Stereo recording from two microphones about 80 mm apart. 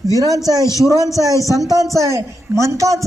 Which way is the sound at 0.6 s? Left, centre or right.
Left.